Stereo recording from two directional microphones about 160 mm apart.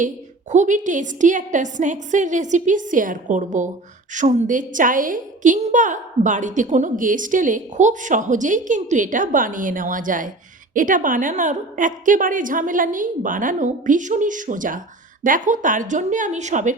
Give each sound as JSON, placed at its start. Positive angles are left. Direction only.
{"t": 0.5, "sound": "a woman's voice", "side_deg": -50}